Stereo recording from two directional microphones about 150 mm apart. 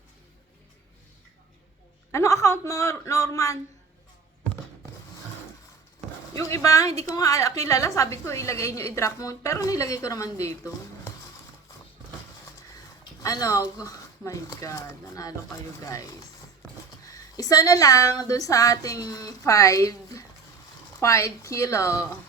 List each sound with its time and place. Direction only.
2.1 s a woman's voice: 20° left (ahead or behind)
6.3 s a woman's voice: 20° left (ahead or behind)
13.2 s a woman's voice: 20° left (ahead or behind)
17.1 s a woman's voice: 25° left (ahead or behind)